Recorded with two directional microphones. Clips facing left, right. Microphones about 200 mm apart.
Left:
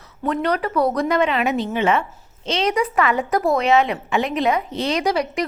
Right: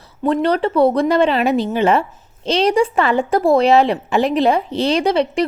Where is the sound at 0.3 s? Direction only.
30° right (ahead or behind).